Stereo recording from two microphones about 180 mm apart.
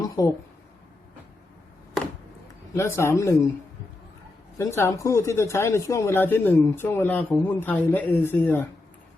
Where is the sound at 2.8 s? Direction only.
15° left (ahead or behind).